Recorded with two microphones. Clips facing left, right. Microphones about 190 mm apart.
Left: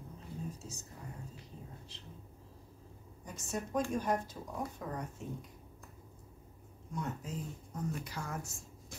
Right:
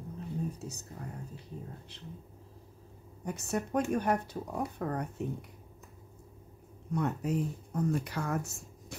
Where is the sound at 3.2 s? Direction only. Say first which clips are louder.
Right 6 dB; 65° right (ahead or behind).